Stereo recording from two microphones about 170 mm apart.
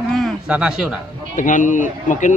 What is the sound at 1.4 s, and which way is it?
Speech, 50° left (ahead or behind).